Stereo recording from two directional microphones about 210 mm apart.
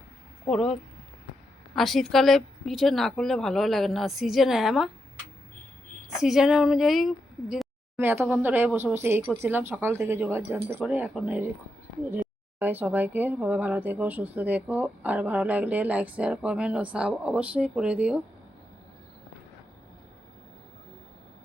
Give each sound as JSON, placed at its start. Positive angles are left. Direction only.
{"t": 0.4, "sound": "speech", "side_deg": 0}
{"t": 6.1, "sound": "speech", "side_deg": 0}